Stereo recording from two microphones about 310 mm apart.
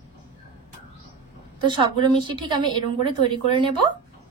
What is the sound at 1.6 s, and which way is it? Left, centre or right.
A woman's voice, centre.